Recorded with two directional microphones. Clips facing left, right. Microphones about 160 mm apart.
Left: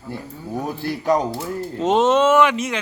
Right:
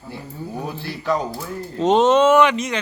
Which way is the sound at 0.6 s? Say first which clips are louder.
Left 4 dB; 45° left (ahead or behind).